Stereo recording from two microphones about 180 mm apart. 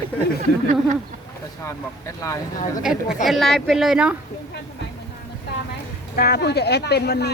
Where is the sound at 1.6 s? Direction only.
15° left (ahead or behind).